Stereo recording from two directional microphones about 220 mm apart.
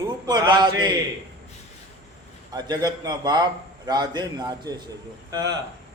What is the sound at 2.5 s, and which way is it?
A man's voice, 20° right (ahead or behind).